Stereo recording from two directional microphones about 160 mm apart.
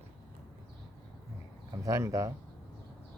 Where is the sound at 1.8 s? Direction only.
20° right (ahead or behind).